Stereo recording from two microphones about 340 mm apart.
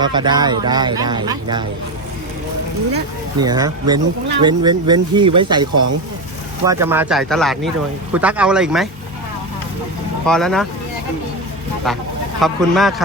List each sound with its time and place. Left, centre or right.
0.0 s speech: centre
3.4 s speech: centre
5.7 s speech: right
6.7 s speech: centre
10.2 s speech: centre
12.4 s speech: centre